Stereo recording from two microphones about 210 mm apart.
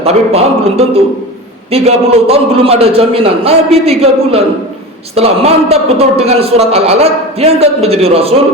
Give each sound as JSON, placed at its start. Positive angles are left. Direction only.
{"t": 0.0, "sound": "a man's voice", "side_deg": -30}